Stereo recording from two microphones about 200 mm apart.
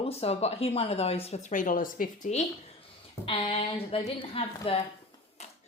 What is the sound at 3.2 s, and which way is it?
A woman's voice, 25° left (ahead or behind).